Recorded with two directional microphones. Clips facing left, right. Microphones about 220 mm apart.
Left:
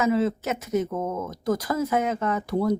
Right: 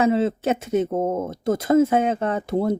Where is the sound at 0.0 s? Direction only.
30° right (ahead or behind).